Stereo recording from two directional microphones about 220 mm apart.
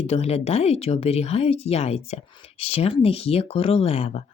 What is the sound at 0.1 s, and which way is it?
Speech, 30° left (ahead or behind).